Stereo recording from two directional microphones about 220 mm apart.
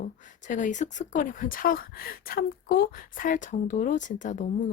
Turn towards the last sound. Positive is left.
turn(degrees=35)  # may be behind; listen again after turning